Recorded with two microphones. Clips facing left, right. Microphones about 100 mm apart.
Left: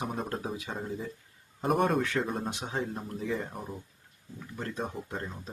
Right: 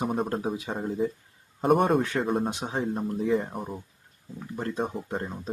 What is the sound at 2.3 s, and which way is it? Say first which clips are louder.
Speech: right 7 dB; 40° right (ahead or behind).